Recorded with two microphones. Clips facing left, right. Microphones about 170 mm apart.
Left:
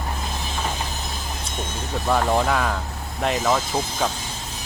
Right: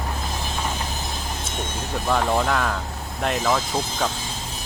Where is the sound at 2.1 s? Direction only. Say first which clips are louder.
Left 1 dB; 5° left (ahead or behind).